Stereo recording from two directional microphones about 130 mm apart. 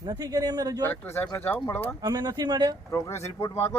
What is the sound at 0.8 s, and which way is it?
Speech, 15° left (ahead or behind).